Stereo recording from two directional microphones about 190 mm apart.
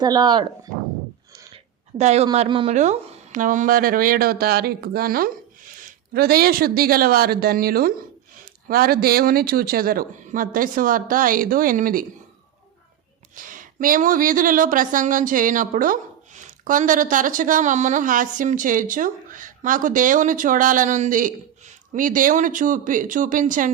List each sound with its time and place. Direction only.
0.0 s speech: 20° right (ahead or behind)
2.0 s a man's voice: 35° right (ahead or behind)
13.3 s speech: 45° right (ahead or behind)